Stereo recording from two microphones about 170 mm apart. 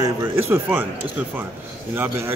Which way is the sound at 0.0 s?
15° right (ahead or behind).